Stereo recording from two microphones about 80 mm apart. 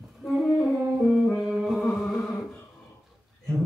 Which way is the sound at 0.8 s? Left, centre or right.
Centre.